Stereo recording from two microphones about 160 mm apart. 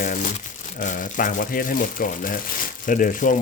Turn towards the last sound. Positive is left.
turn(degrees=55)  # may be behind; listen again after turning